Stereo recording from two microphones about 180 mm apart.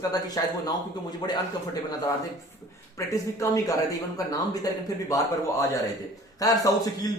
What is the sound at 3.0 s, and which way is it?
Speech, 15° left (ahead or behind).